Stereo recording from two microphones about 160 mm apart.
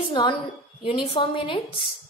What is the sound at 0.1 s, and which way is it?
A woman's voice, 30° left (ahead or behind).